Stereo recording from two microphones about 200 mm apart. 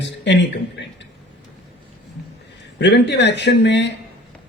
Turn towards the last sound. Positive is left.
turn(degrees=60)  # may be behind; listen again after turning